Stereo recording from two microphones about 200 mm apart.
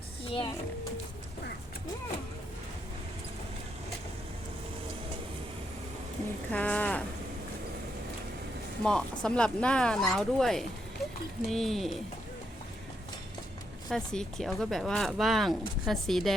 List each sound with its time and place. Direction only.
0.3 s speech: 25° left (ahead or behind)
6.5 s speech: 5° left (ahead or behind)
8.8 s speech: 5° left (ahead or behind)
13.9 s speech: 5° left (ahead or behind)